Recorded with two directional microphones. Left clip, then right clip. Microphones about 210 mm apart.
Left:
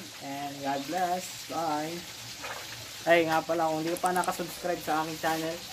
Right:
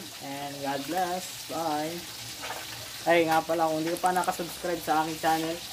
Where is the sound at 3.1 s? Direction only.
Centre (ahead or behind).